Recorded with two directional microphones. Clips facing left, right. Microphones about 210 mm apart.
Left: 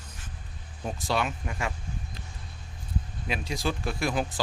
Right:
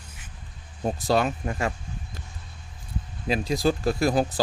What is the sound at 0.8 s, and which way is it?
Speech, 40° right (ahead or behind).